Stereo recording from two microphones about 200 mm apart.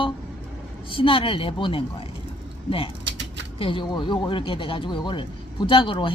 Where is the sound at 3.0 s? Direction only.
65° right (ahead or behind).